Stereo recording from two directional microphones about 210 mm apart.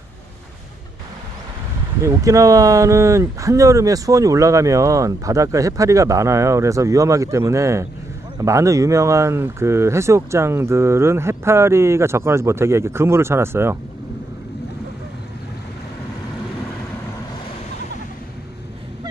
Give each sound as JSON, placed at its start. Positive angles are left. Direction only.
{"t": 2.0, "sound": "speech", "side_deg": -15}